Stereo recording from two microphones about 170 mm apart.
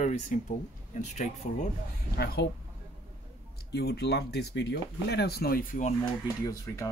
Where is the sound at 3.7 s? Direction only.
75° left (ahead or behind); by 5.9 s 55° left (ahead or behind).